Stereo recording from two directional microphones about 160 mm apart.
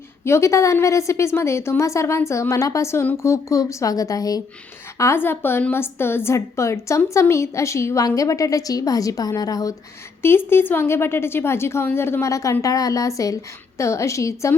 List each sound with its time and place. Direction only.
0.3 s a woman's voice: 20° left (ahead or behind)